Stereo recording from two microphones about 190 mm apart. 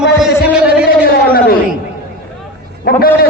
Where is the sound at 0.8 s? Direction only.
55° left (ahead or behind).